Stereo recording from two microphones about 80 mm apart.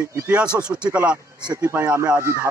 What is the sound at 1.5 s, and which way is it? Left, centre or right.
Speech, right.